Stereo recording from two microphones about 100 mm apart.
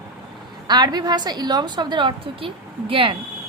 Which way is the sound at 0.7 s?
45° right (ahead or behind).